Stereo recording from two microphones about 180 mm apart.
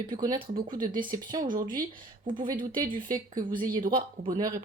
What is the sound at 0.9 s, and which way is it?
Speech, 50° right (ahead or behind).